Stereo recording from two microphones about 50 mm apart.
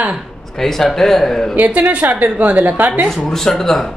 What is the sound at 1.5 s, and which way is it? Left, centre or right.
A woman's voice, right.